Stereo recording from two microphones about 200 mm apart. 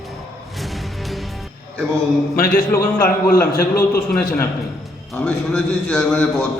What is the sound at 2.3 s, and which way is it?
Speech, 45° left (ahead or behind).